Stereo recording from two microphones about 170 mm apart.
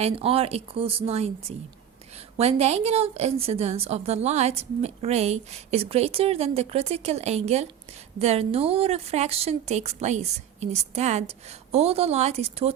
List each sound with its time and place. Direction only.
0.0 s a woman's voice: 35° right (ahead or behind)